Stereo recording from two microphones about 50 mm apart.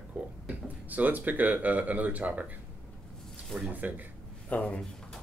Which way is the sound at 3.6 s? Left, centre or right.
Right.